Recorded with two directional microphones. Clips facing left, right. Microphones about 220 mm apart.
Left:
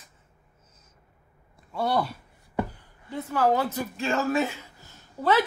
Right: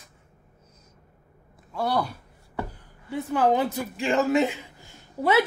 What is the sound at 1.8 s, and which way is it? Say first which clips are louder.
Speech: even; centre (ahead or behind).